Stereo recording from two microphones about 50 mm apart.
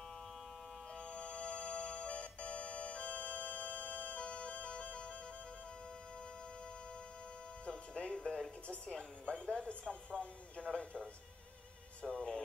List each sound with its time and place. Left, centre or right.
1.1 s organ: left
7.6 s music: left
9.3 s a sound: left
12.0 s music: centre